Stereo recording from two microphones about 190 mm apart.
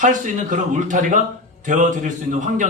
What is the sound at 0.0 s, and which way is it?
A man's voice, 40° right (ahead or behind).